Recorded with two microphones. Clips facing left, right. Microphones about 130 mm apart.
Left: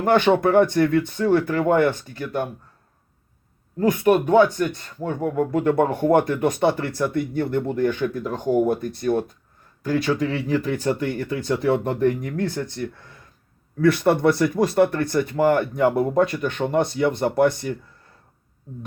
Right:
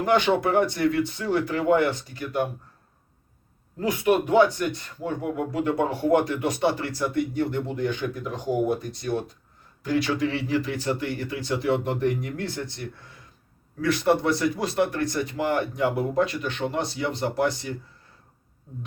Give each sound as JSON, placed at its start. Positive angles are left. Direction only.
{"t": 0.0, "sound": "speech", "side_deg": 50}
{"t": 3.8, "sound": "speech", "side_deg": 45}